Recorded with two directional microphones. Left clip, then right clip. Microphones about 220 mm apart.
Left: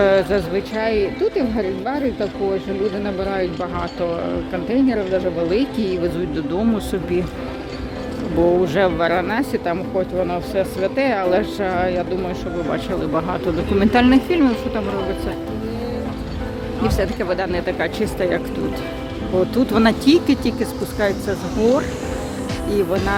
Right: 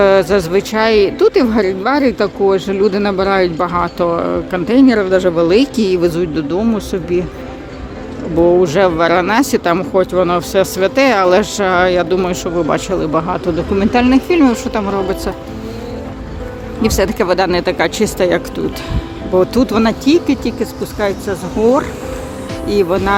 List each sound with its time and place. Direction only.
0.0 s speech: 20° right (ahead or behind)
8.6 s speech: 15° right (ahead or behind)
16.8 s speech: 30° right (ahead or behind)